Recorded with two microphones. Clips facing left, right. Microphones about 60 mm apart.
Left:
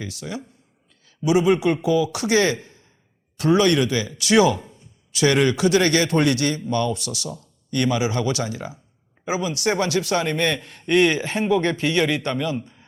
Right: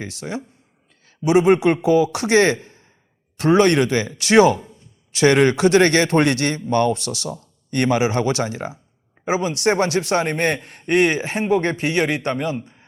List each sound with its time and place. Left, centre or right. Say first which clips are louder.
0.0 s a man's voice: right 3 dB; right